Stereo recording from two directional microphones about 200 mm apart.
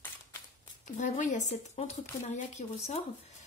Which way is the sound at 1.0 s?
35° left (ahead or behind).